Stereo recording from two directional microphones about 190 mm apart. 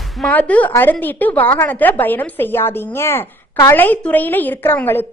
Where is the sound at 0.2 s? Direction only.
10° left (ahead or behind).